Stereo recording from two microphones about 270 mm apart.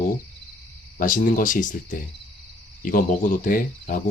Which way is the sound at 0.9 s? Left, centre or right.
Left.